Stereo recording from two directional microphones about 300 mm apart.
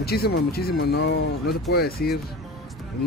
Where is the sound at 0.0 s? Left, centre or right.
Left.